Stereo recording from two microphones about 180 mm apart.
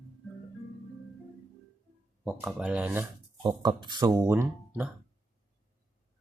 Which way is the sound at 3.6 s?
25° right (ahead or behind).